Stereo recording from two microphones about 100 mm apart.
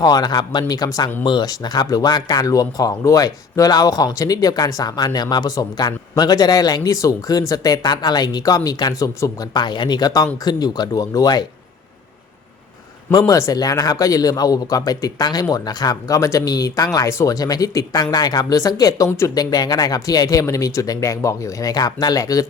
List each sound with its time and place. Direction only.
0.0 s speech: 45° left (ahead or behind)
13.1 s speech: 35° left (ahead or behind)
19.4 s speech: 40° left (ahead or behind)